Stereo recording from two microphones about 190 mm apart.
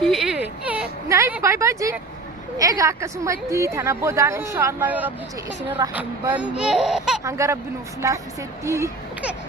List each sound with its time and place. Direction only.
0.0 s whimper: centre (ahead or behind)
2.6 s a woman's voice: 20° right (ahead or behind); by 7.2 s centre (ahead or behind)
7.3 s a woman's voice: 15° right (ahead or behind)